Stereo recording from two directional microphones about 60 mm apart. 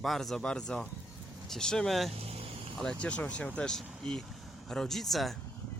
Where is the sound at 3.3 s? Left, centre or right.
Centre.